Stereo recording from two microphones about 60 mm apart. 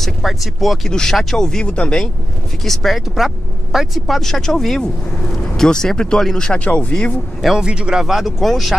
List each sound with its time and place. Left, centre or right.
0.0 s speech: centre
0.8 s speech: centre
2.6 s speech: centre
7.4 s speech: centre
8.0 s speech: centre